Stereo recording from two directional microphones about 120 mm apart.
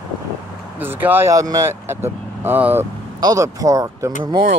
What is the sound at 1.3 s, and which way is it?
Speech, 30° right (ahead or behind).